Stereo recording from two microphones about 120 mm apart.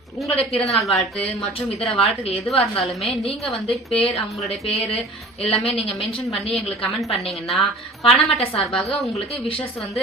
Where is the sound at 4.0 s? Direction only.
60° left (ahead or behind).